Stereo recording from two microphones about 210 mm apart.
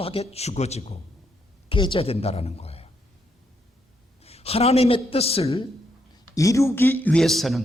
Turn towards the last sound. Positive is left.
turn(degrees=0)  # may be behind; listen again after turning